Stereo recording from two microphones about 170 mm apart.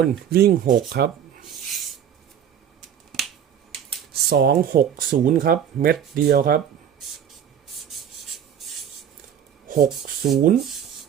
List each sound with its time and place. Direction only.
0.0 s speech: 70° right (ahead or behind)
4.1 s speech: 70° right (ahead or behind)
7.7 s rub: centre (ahead or behind)
9.6 s a sound: 65° right (ahead or behind)
9.9 s speech: centre (ahead or behind)